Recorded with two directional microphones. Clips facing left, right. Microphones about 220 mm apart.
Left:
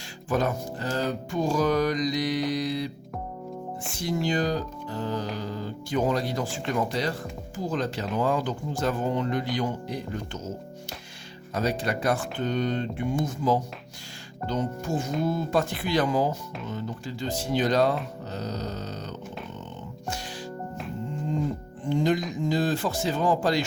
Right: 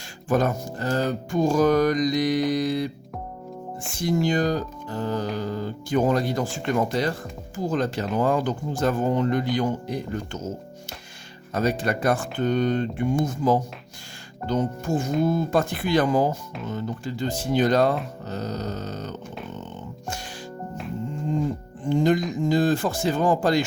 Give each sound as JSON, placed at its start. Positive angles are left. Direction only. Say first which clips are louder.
{"t": 0.3, "sound": "speech", "louder": "right 4 dB", "side_deg": -50}
{"t": 4.0, "sound": "speech", "louder": "right 4 dB", "side_deg": -45}
{"t": 11.5, "sound": "speech", "louder": "right 3 dB", "side_deg": -50}
{"t": 21.8, "sound": "speech", "louder": "right 4 dB", "side_deg": -50}